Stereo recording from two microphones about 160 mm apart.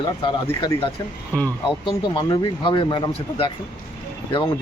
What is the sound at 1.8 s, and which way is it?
Speech, 30° left (ahead or behind).